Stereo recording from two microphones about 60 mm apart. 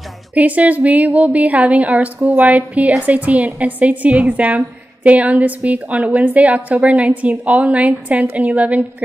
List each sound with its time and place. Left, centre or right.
0.4 s a woman's voice: right